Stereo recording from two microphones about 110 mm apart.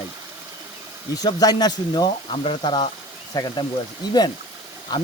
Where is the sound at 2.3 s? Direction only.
50° left (ahead or behind).